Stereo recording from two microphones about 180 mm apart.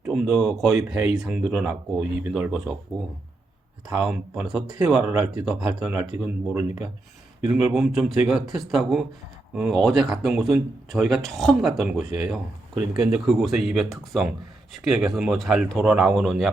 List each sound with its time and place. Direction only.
0.1 s speech: centre (ahead or behind)
3.9 s speech: 5° right (ahead or behind)